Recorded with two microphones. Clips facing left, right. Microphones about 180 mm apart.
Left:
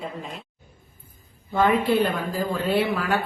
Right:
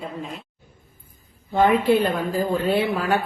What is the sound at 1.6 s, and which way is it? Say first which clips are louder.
A woman's voice: right 2 dB; 15° right (ahead or behind).